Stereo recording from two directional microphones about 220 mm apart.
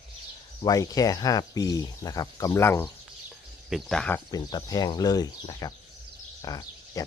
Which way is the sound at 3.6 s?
Centre (ahead or behind).